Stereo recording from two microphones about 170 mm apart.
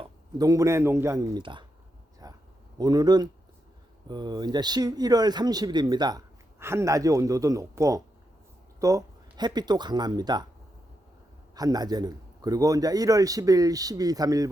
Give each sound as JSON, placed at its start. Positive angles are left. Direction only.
{"t": 0.0, "sound": "speech", "side_deg": -20}
{"t": 2.2, "sound": "a sound", "side_deg": -20}
{"t": 2.7, "sound": "speech", "side_deg": -25}
{"t": 11.5, "sound": "speech", "side_deg": -20}